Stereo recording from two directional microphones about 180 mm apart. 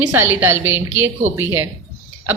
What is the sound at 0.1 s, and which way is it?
Speech, 10° right (ahead or behind).